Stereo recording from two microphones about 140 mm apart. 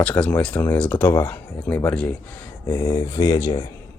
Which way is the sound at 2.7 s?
20° left (ahead or behind).